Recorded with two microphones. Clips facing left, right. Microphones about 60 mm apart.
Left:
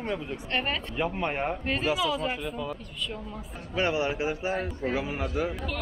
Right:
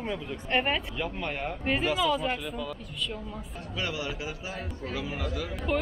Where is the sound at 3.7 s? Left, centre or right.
Left.